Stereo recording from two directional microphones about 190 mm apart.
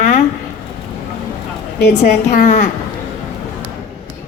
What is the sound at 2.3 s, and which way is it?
Speech, 40° left (ahead or behind).